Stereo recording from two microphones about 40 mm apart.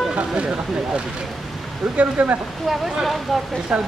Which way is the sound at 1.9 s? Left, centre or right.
Right.